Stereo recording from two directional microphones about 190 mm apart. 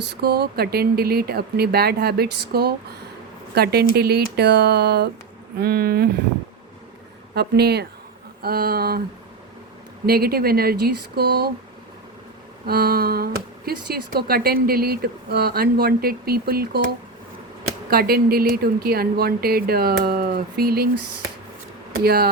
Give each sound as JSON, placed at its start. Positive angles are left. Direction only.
{"t": 0.0, "sound": "speech", "side_deg": -60}
{"t": 7.3, "sound": "speech", "side_deg": -60}
{"t": 10.1, "sound": "speech", "side_deg": -55}
{"t": 12.6, "sound": "speech", "side_deg": -55}
{"t": 17.8, "sound": "speech", "side_deg": -55}